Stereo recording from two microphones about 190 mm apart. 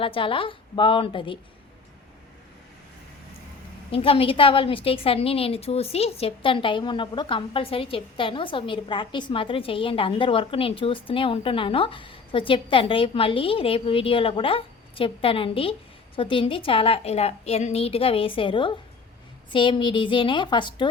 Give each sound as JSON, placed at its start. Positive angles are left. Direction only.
{"t": 0.0, "sound": "a woman's voice", "side_deg": 30}
{"t": 3.9, "sound": "a woman's voice", "side_deg": 30}